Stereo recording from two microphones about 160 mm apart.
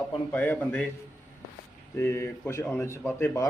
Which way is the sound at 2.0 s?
15° left (ahead or behind).